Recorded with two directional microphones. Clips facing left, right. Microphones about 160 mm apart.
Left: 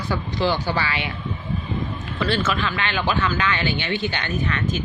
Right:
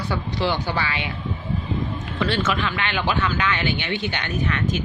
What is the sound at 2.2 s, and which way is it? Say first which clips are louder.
A woman's voice: even; 15° right (ahead or behind).